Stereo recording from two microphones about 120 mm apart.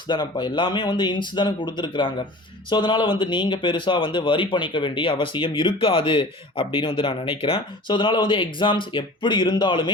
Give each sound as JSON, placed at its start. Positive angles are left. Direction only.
{"t": 0.1, "sound": "speech", "side_deg": 40}